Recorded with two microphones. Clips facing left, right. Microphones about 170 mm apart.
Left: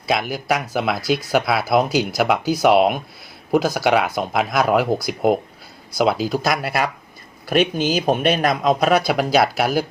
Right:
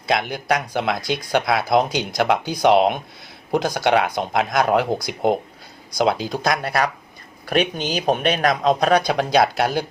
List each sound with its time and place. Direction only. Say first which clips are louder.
0.0 s speech: even; 5° left (ahead or behind)